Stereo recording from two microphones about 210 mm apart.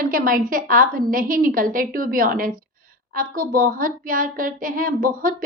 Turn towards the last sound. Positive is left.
turn(degrees=-40)  # may be behind; listen again after turning